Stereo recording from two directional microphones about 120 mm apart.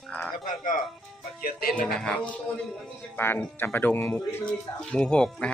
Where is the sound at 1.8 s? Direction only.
10° left (ahead or behind).